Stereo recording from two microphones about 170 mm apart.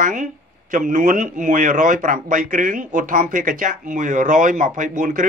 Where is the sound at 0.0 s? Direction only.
50° right (ahead or behind).